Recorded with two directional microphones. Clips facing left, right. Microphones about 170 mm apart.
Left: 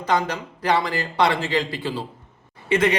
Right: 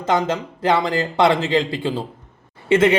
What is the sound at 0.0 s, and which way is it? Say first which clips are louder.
A man's voice: right 3 dB; 25° right (ahead or behind).